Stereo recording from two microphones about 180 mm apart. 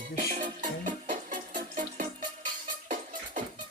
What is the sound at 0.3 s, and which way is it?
Music, 45° right (ahead or behind).